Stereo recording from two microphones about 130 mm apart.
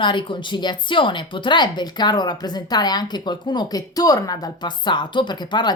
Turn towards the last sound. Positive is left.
turn(degrees=35)  # may be behind; listen again after turning